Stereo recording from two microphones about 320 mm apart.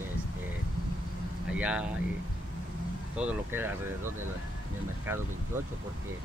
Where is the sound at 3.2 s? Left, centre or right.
Centre.